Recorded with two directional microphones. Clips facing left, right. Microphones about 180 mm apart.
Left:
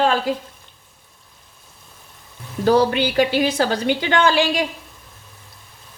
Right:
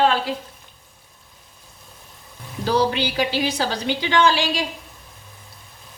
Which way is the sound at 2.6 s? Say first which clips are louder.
Left 4 dB; 50° left (ahead or behind).